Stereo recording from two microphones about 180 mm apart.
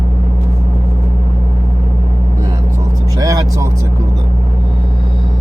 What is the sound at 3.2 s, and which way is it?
Vehicle, 20° right (ahead or behind).